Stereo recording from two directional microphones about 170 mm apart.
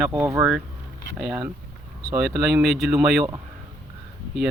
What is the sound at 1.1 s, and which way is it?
Speech, 5° right (ahead or behind).